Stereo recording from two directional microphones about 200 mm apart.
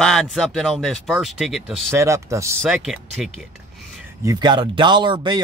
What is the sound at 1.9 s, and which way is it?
Speech, 15° right (ahead or behind).